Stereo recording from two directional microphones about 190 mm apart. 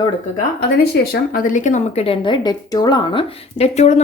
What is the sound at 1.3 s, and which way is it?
Speech, 45° left (ahead or behind).